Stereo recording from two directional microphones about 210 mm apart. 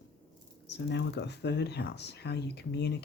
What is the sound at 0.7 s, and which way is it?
Speech, 55° left (ahead or behind).